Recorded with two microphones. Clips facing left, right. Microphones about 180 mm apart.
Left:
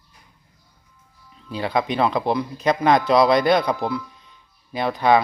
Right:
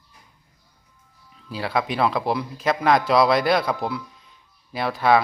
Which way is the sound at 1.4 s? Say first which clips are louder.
Left 2 dB; centre (ahead or behind).